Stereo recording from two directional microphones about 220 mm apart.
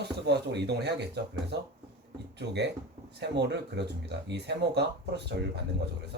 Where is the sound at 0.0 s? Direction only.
50° right (ahead or behind).